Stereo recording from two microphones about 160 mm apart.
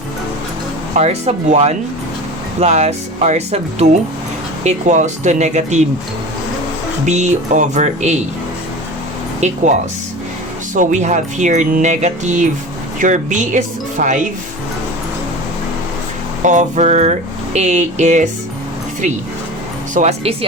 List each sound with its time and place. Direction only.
0.9 s speech: 45° right (ahead or behind)
7.0 s speech: 45° right (ahead or behind)
9.4 s speech: 45° right (ahead or behind)
10.8 s speech: 50° right (ahead or behind)
16.4 s speech: 50° right (ahead or behind)
19.9 s speech: 45° right (ahead or behind)